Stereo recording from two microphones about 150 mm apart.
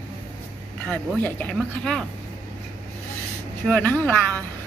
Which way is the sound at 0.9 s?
10° left (ahead or behind).